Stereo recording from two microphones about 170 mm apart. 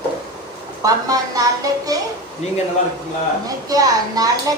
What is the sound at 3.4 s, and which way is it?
Speech, 20° right (ahead or behind).